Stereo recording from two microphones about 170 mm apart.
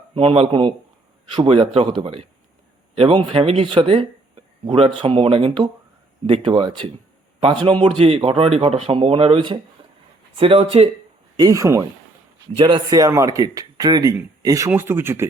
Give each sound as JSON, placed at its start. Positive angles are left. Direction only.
{"t": 0.1, "sound": "speech", "side_deg": -35}
{"t": 9.8, "sound": "a sound", "side_deg": -30}
{"t": 10.3, "sound": "speech", "side_deg": -35}
{"t": 11.3, "sound": "speech", "side_deg": -20}
{"t": 12.5, "sound": "speech", "side_deg": -30}